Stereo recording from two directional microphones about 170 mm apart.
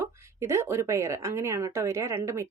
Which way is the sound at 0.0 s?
15° right (ahead or behind).